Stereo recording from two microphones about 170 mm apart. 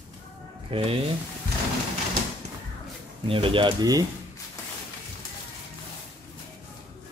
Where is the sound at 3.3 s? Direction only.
30° right (ahead or behind).